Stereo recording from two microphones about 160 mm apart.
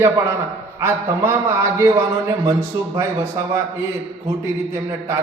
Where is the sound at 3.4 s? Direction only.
20° right (ahead or behind).